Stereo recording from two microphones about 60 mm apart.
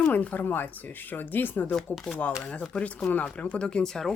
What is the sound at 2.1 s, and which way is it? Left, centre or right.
Speech, centre.